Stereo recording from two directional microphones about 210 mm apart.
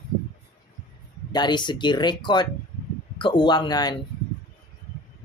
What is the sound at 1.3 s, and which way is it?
Speech, 20° left (ahead or behind).